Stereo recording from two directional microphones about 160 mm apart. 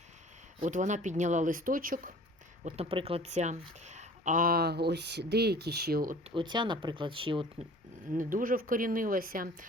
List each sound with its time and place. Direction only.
0.6 s speech: 50° right (ahead or behind)
2.6 s speech: 40° right (ahead or behind); by 6.1 s 70° right (ahead or behind)
6.3 s speech: 30° right (ahead or behind)
8.1 s speech: 55° right (ahead or behind)